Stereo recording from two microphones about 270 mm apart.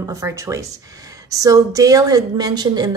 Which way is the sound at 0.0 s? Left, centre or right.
Centre.